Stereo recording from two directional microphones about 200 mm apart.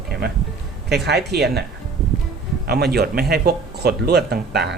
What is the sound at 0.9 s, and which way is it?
Speech, 55° right (ahead or behind).